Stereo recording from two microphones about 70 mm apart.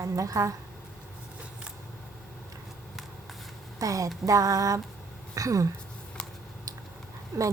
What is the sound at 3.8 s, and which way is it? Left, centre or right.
A woman's voice, right.